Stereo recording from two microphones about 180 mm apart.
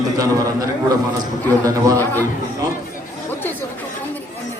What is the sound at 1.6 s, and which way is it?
Speech, 20° right (ahead or behind).